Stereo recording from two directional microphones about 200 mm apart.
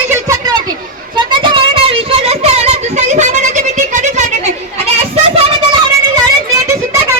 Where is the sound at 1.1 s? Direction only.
25° right (ahead or behind); by 4.3 s 40° right (ahead or behind).